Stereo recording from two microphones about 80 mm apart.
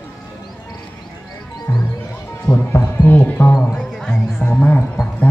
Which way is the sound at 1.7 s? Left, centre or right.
Left.